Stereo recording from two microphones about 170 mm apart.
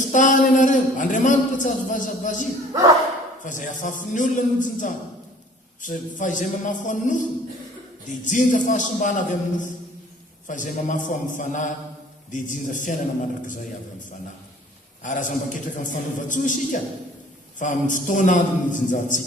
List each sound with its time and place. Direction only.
0.0 s a sound: 50° left (ahead or behind)
3.4 s a man's voice: 50° left (ahead or behind)
15.0 s a man's voice: 50° left (ahead or behind)